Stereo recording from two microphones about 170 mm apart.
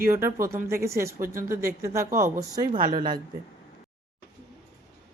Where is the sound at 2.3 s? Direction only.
55° right (ahead or behind).